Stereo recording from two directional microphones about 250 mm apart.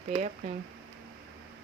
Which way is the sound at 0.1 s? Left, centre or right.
Right.